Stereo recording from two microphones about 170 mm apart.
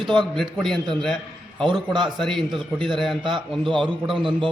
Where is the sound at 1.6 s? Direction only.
25° right (ahead or behind).